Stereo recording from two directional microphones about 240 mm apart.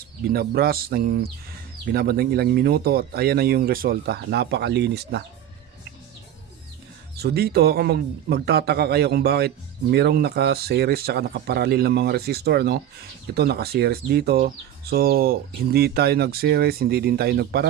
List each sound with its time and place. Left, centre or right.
0.3 s speech: right
7.2 s speech: right